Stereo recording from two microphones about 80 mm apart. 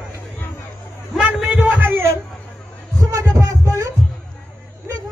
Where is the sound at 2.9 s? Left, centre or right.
Right.